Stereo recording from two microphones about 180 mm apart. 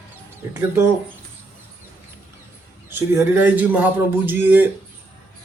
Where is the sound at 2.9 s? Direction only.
15° right (ahead or behind).